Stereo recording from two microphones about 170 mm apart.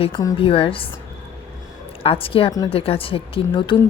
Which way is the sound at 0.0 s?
25° left (ahead or behind).